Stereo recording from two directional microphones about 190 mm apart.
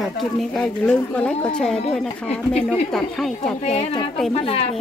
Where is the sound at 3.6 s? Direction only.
35° left (ahead or behind).